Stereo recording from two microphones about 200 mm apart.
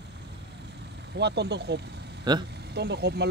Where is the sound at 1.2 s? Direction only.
60° right (ahead or behind).